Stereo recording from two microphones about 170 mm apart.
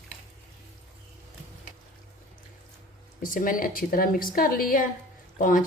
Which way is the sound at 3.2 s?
55° left (ahead or behind).